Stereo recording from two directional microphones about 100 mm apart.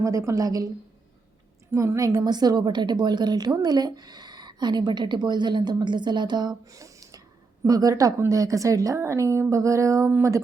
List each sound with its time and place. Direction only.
0.0 s a woman's voice: 30° right (ahead or behind)
1.7 s a woman's voice: 30° right (ahead or behind)
10.1 s speech: 20° right (ahead or behind)